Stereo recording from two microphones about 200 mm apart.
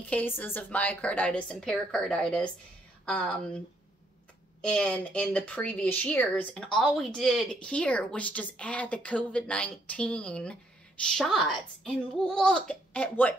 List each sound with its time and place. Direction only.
0.0 s a woman's voice: 10° left (ahead or behind)